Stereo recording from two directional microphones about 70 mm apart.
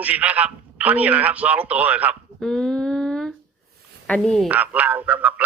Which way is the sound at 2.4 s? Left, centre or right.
Centre.